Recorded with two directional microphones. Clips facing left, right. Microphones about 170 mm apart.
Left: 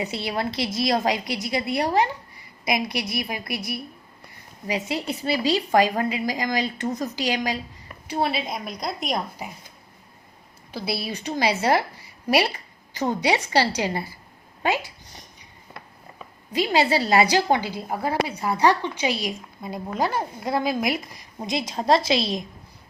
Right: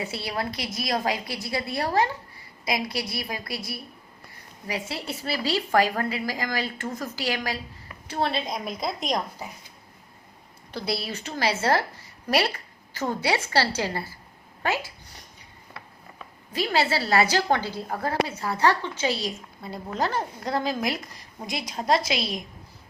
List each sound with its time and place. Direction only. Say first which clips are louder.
0.0 s a woman's voice: left 3 dB; 20° left (ahead or behind); by 9.2 s centre (ahead or behind)
10.7 s a woman's voice: left 1 dB; 10° left (ahead or behind); by 22.4 s 25° left (ahead or behind)